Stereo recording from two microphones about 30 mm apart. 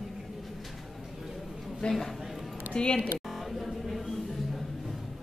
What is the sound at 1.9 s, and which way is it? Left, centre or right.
Speech, centre.